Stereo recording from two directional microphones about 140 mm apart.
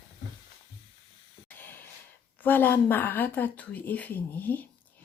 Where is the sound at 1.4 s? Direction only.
15° left (ahead or behind).